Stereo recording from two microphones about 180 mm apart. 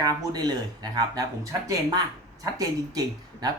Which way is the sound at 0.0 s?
20° right (ahead or behind).